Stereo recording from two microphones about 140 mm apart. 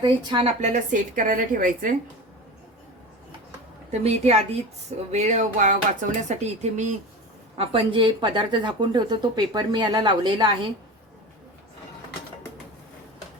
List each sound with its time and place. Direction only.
0.0 s speech: 35° right (ahead or behind)
0.4 s a woman's voice: 60° right (ahead or behind)
4.0 s a woman's voice: 50° right (ahead or behind)
7.5 s speech: 40° right (ahead or behind)